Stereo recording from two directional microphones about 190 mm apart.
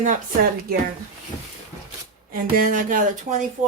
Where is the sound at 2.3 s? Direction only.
45° right (ahead or behind).